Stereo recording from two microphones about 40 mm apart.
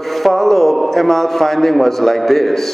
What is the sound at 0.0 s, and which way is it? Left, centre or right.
A man's voice, centre.